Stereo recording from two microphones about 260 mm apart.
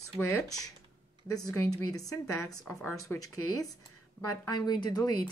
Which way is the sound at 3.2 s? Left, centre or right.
Left.